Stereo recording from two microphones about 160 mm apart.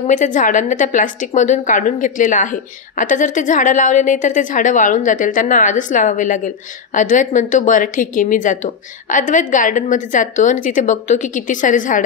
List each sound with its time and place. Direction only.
0.0 s a woman's voice: 50° left (ahead or behind)